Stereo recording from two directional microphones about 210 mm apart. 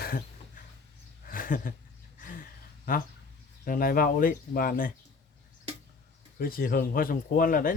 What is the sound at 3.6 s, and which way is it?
Speech, 45° left (ahead or behind).